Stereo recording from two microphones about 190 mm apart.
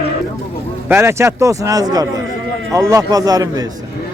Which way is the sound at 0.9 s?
15° right (ahead or behind).